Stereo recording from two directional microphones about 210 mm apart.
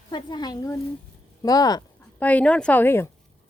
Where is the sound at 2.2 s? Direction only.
5° left (ahead or behind).